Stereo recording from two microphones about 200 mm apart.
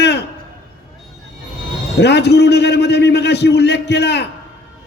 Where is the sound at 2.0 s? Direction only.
55° left (ahead or behind).